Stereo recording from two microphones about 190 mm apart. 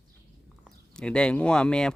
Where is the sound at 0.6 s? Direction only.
5° left (ahead or behind).